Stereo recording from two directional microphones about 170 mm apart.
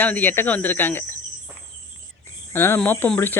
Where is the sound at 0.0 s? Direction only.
10° left (ahead or behind).